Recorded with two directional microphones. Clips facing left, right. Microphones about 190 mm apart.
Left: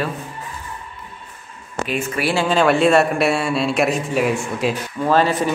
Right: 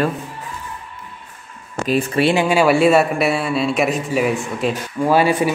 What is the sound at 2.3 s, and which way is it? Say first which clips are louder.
A man's voice: even; 15° right (ahead or behind).